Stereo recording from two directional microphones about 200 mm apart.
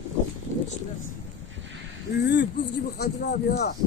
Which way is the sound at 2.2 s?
55° left (ahead or behind).